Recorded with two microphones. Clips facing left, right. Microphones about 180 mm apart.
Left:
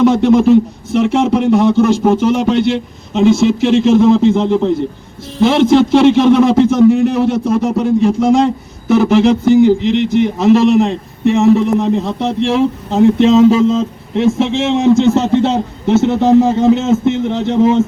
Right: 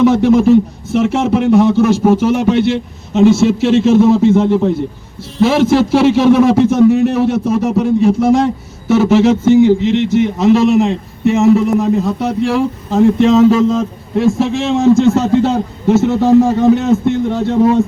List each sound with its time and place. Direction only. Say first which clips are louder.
0.0 s a man's voice: even; 5° right (ahead or behind)
13.1 s a man's voice: left 1 dB; 30° left (ahead or behind)